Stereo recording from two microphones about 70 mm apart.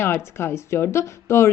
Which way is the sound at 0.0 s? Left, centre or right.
Left.